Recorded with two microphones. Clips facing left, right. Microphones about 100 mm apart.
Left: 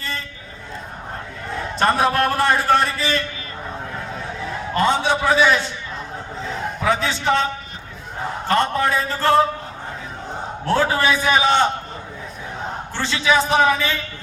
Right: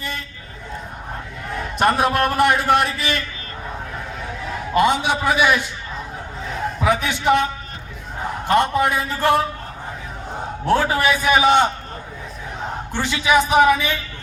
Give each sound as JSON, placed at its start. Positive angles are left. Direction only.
{"t": 2.0, "sound": "a man's voice", "side_deg": -15}
{"t": 4.7, "sound": "a man's voice", "side_deg": -15}
{"t": 6.8, "sound": "a man's voice", "side_deg": -15}
{"t": 8.4, "sound": "a man's voice", "side_deg": -15}
{"t": 10.7, "sound": "a man's voice", "side_deg": -15}
{"t": 12.9, "sound": "a man's voice", "side_deg": -15}